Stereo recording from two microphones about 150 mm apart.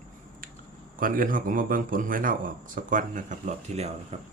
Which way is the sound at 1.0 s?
65° right (ahead or behind).